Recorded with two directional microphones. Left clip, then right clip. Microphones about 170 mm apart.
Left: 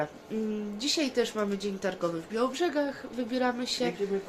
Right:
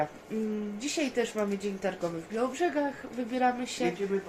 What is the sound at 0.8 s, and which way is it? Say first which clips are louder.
Speech: left 3 dB; 20° left (ahead or behind).